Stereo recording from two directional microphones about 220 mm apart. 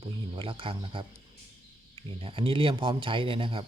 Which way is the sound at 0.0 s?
25° right (ahead or behind).